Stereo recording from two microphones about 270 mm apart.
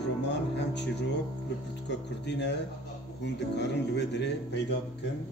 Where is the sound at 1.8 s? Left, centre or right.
Left.